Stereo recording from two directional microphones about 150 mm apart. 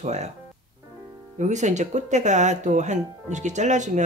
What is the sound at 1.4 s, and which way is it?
Speech, 50° right (ahead or behind).